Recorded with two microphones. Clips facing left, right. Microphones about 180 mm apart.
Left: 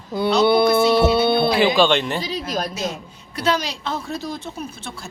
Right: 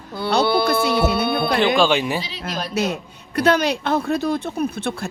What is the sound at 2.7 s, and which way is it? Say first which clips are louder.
A woman's voice: right 5 dB; 65° right (ahead or behind).